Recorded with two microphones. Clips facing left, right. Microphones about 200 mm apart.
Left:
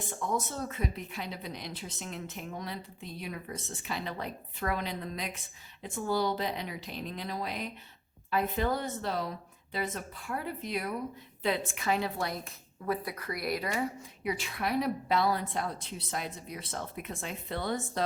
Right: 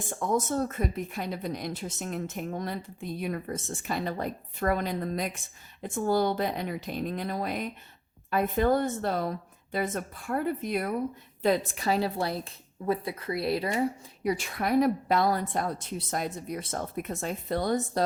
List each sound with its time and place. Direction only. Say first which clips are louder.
0.3 s speech: right 7 dB; 45° right (ahead or behind)
11.4 s a woman's voice: right 5 dB; 40° right (ahead or behind)
14.3 s speech: right 5 dB; 45° right (ahead or behind)